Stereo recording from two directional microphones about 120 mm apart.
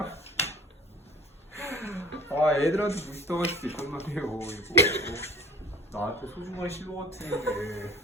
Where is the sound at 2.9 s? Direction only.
60° left (ahead or behind).